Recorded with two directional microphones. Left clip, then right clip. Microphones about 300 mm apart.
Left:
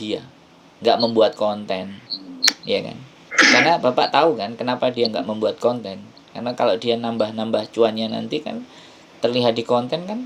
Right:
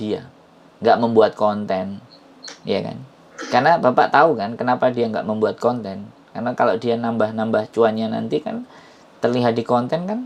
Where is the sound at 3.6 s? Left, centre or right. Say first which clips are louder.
Right 3 dB; centre.